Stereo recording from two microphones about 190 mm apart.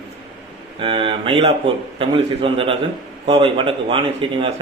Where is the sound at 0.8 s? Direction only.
30° right (ahead or behind).